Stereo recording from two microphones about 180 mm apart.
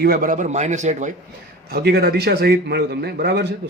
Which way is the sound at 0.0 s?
55° right (ahead or behind).